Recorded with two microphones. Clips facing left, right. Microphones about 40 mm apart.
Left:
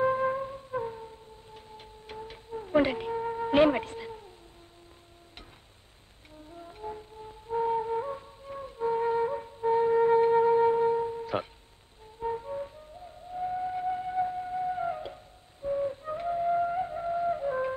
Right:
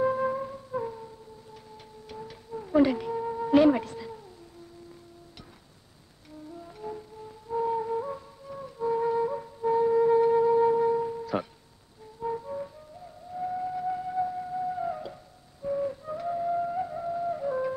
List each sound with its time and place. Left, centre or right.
0.0 s wind instrument: left
0.7 s music: centre
1.5 s music: left
6.5 s music: left
7.2 s flute: left
11.1 s music: left
13.3 s a sound: centre
13.8 s music: left
14.3 s flute: left
15.6 s music: centre
16.0 s flute: left